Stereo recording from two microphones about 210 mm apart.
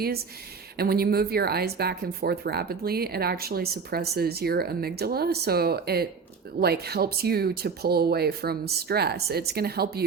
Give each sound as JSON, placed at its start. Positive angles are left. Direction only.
{"t": 0.8, "sound": "speech", "side_deg": -45}